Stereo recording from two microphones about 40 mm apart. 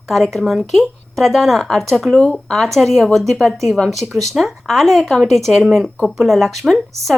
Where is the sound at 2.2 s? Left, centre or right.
Centre.